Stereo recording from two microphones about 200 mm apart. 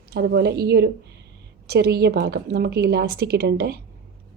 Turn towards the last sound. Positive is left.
turn(degrees=-55)  # may be behind; listen again after turning